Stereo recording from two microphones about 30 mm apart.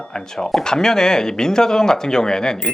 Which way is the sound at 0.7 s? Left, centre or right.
Left.